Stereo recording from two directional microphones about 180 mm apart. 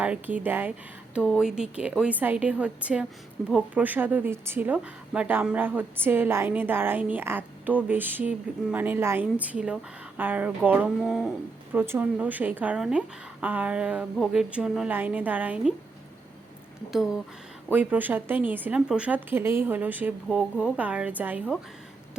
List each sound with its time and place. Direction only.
0.0 s a woman's voice: 10° right (ahead or behind)
1.1 s a woman's voice: centre (ahead or behind)
16.9 s a woman's voice: centre (ahead or behind)